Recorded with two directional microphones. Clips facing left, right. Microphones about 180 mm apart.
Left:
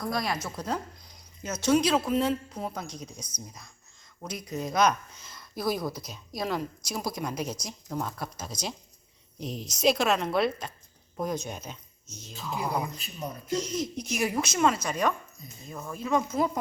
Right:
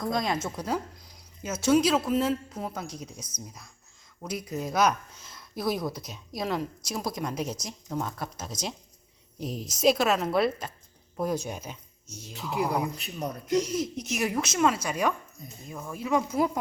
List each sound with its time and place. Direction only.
0.0 s a woman's voice: 20° right (ahead or behind)
0.7 s a woman's voice: 5° right (ahead or behind)
11.7 s a sound: 10° right (ahead or behind)
12.4 s a woman's voice: 10° right (ahead or behind)